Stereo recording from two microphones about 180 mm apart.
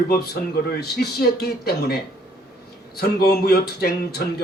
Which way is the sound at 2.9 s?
60° left (ahead or behind).